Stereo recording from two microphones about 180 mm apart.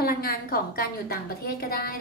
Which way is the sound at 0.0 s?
55° left (ahead or behind).